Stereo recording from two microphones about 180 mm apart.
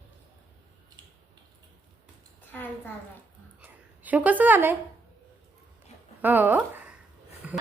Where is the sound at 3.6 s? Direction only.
10° right (ahead or behind).